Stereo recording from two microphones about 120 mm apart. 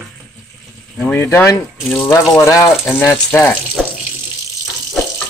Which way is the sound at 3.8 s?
Centre (ahead or behind).